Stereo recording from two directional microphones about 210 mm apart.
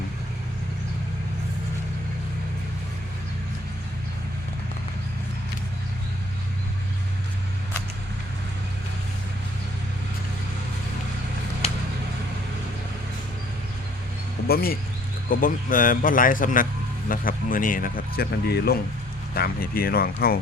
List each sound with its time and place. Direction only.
14.4 s speech: 45° left (ahead or behind)